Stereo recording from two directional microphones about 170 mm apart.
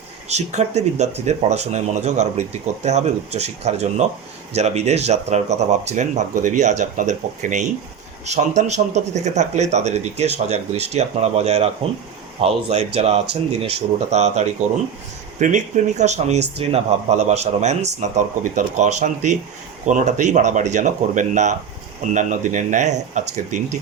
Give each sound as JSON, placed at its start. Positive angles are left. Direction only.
{"t": 0.3, "sound": "speech", "side_deg": -40}